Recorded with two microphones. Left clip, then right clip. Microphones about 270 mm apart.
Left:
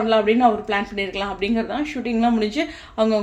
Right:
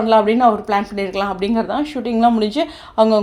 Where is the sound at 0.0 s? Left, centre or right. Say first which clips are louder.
Right 4 dB; right.